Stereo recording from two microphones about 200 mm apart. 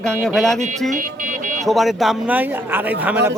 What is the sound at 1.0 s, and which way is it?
Buzzer, 40° right (ahead or behind).